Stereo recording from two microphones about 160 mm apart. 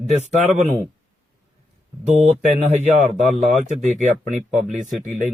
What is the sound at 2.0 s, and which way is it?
Speech, 45° right (ahead or behind).